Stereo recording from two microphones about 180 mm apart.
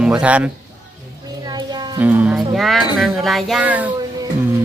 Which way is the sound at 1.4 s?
25° right (ahead or behind).